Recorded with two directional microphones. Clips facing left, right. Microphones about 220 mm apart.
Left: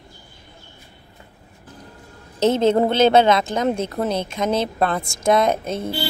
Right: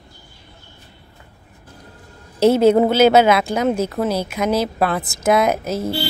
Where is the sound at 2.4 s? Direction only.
10° right (ahead or behind).